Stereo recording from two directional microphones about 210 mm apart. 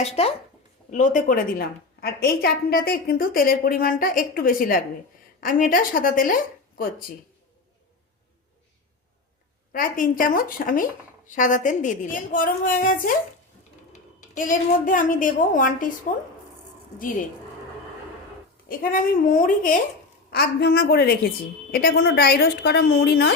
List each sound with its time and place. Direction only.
0.0 s a woman's voice: 30° left (ahead or behind)
9.7 s a woman's voice: 40° left (ahead or behind)
14.3 s a woman's voice: 40° left (ahead or behind)
18.7 s a woman's voice: 40° left (ahead or behind)